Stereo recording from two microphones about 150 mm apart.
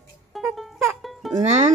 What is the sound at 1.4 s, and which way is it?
Music, 50° right (ahead or behind).